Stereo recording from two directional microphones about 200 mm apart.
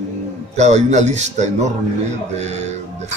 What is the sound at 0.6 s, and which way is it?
Speech, 35° right (ahead or behind).